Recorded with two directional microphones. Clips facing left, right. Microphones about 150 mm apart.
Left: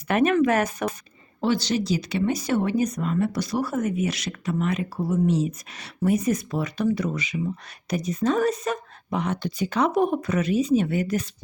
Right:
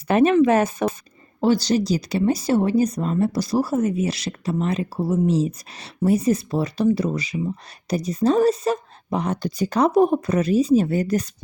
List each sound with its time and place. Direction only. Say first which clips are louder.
0.1 s speech: right 4 dB; 30° right (ahead or behind)
1.4 s speech: right 5 dB; 40° right (ahead or behind)